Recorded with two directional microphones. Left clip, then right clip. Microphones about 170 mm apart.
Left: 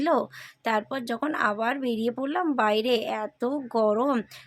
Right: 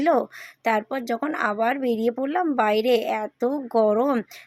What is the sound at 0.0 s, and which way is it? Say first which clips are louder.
Speech: right 4 dB; 15° right (ahead or behind).